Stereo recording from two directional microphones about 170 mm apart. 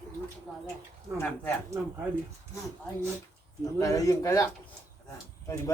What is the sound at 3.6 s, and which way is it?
Speech, 20° left (ahead or behind).